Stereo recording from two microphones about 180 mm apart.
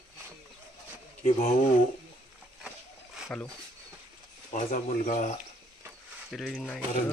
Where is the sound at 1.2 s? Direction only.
50° left (ahead or behind).